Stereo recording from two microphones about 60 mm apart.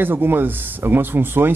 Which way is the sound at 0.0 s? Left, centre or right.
Right.